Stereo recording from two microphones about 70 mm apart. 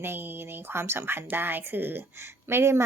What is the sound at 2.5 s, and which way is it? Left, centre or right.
Speech, right.